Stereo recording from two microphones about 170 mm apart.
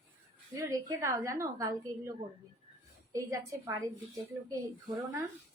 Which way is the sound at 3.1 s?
20° right (ahead or behind).